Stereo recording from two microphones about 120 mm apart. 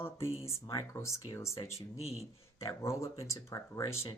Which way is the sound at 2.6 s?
25° left (ahead or behind).